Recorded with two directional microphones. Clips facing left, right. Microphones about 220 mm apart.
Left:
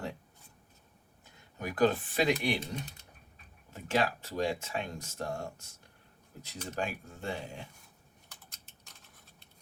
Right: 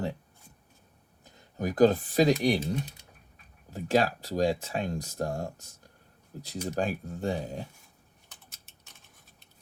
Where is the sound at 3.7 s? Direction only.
35° right (ahead or behind).